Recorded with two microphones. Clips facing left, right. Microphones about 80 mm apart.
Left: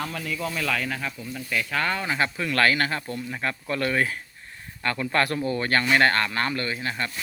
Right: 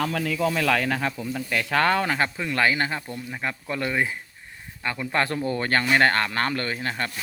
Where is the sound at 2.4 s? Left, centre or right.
Centre.